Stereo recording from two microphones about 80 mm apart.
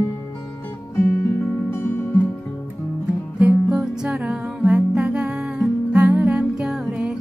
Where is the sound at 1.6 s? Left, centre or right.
Left.